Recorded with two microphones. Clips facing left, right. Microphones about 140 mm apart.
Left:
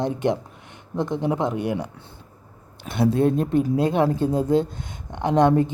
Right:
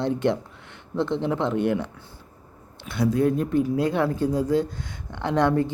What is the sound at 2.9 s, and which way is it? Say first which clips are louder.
Speech: left 2 dB; 25° left (ahead or behind).